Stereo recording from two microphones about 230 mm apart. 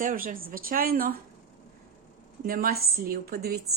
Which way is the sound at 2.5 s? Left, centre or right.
Right.